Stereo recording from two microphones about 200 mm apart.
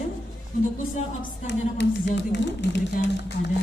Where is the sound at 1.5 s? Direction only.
60° left (ahead or behind).